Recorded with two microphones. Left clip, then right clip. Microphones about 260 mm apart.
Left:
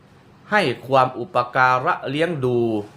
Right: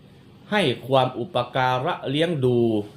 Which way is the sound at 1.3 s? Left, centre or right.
Centre.